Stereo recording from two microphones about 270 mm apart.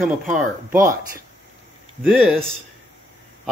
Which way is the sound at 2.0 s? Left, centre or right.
Centre.